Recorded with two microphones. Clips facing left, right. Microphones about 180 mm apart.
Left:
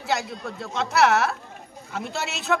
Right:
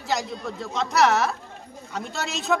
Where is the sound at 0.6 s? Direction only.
Centre (ahead or behind).